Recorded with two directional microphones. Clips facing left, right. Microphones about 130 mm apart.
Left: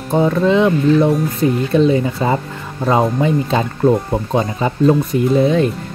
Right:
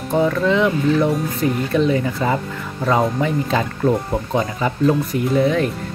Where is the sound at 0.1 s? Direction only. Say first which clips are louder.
Left 3 dB; 25° left (ahead or behind).